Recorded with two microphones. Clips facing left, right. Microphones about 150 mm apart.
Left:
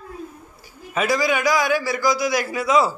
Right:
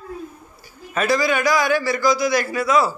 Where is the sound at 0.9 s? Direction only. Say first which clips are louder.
Right 1 dB; 10° left (ahead or behind).